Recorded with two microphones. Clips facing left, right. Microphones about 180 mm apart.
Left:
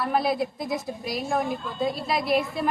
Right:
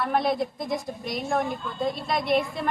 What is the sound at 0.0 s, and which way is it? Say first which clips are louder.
A woman's voice: even; 5° left (ahead or behind).